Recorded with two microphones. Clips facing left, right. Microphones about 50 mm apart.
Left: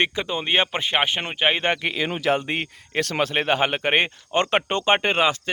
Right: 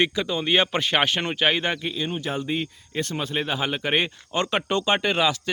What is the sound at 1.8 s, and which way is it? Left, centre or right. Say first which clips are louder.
Speech: left 3 dB; left.